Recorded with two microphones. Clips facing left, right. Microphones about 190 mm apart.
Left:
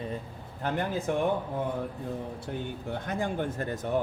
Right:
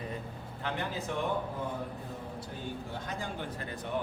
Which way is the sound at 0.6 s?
45° left (ahead or behind).